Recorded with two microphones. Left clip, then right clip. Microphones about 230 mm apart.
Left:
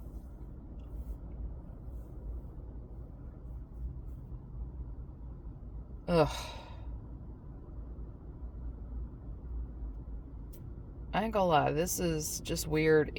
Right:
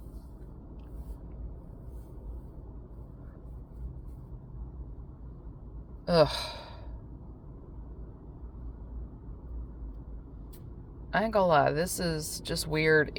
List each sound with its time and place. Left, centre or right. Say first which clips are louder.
6.1 s speech: right 5 dB; centre
11.2 s speech: right 4 dB; right